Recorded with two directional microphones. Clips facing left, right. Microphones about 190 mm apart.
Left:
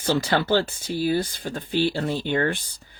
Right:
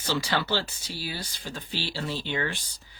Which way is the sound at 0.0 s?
50° left (ahead or behind).